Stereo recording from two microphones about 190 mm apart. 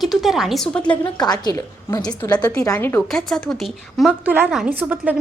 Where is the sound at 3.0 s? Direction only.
Centre (ahead or behind).